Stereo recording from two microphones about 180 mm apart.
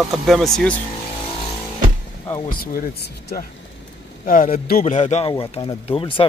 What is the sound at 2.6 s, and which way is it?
Speech, 55° left (ahead or behind).